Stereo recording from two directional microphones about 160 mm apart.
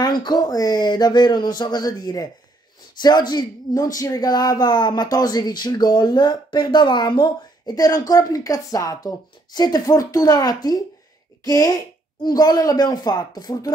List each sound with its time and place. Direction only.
0.2 s speech: 25° left (ahead or behind)